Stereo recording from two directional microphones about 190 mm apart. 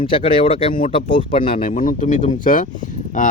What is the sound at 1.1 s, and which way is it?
Speech, 25° left (ahead or behind).